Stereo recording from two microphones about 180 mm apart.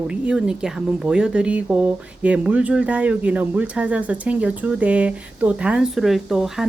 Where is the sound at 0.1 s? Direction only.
5° right (ahead or behind).